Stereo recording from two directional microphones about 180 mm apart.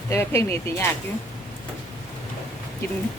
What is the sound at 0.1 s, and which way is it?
Speech, 15° left (ahead or behind).